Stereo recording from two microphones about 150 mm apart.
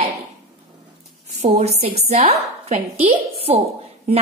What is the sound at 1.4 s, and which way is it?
A woman's voice, 50° right (ahead or behind).